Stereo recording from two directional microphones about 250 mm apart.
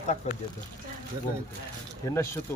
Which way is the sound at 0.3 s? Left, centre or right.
Left.